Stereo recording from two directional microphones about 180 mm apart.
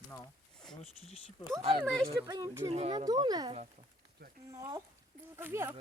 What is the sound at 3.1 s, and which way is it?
Speech, 20° right (ahead or behind).